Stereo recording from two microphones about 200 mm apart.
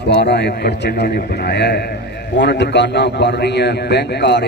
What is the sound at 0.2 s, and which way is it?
A man's voice, 55° left (ahead or behind).